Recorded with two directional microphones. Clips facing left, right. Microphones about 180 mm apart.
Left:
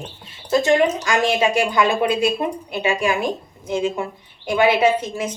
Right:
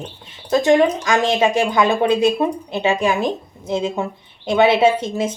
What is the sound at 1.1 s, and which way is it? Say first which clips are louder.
A woman's voice: right 2 dB; 20° right (ahead or behind).